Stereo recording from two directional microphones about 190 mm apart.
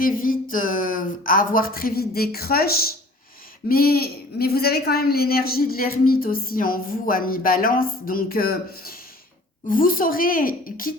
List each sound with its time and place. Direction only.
0.0 s a man's voice: 45° left (ahead or behind)
3.7 s a man's voice: 50° left (ahead or behind)